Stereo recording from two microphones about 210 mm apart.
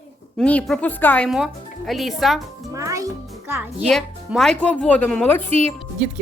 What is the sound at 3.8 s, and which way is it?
Speech, centre (ahead or behind).